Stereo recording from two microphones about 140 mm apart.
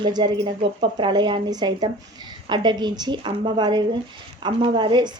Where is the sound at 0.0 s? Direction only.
35° right (ahead or behind).